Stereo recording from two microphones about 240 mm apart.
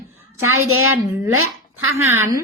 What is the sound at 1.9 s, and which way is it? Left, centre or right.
Speech, centre.